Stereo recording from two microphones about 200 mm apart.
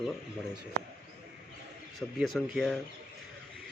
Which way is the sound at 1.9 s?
Centre (ahead or behind).